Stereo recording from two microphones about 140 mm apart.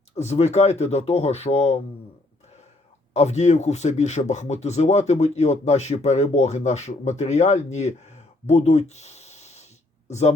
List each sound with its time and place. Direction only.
0.2 s speech: 50° left (ahead or behind)
3.1 s speech: 55° left (ahead or behind)